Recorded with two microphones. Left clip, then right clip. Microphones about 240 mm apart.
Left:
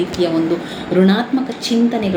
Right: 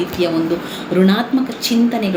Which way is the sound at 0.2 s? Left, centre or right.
Centre.